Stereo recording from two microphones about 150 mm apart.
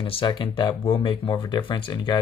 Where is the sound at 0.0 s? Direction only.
35° left (ahead or behind).